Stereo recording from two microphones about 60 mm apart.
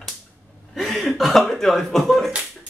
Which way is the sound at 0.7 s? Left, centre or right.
Centre.